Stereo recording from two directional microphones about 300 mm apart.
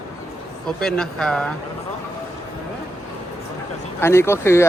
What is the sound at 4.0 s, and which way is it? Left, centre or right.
Speech, centre.